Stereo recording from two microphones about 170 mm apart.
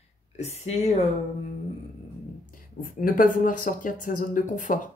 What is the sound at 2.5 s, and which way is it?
Speech, 55° left (ahead or behind).